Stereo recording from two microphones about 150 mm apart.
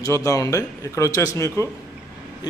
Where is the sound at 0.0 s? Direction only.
20° left (ahead or behind).